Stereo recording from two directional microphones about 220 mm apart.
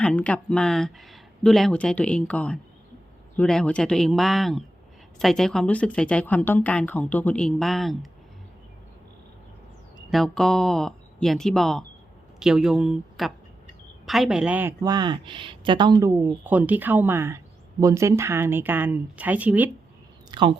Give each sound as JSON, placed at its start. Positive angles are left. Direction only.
{"t": 0.0, "sound": "speech", "side_deg": 5}
{"t": 10.1, "sound": "speech", "side_deg": 0}
{"t": 20.3, "sound": "speech", "side_deg": -20}